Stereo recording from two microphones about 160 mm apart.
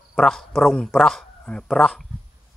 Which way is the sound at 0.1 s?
Centre (ahead or behind).